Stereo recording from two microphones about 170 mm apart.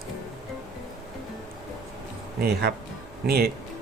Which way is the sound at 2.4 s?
75° right (ahead or behind).